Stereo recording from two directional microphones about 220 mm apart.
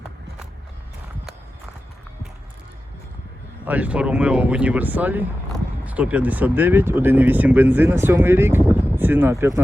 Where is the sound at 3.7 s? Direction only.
5° right (ahead or behind).